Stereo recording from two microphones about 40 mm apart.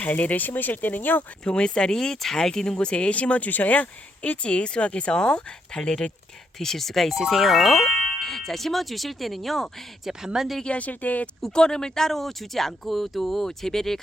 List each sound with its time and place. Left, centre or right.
0.0 s speech: left
1.5 s speech: left
2.7 s speech: left
6.6 s speech: centre
8.2 s speech: centre
10.0 s speech: centre
10.7 s speech: left
11.5 s speech: centre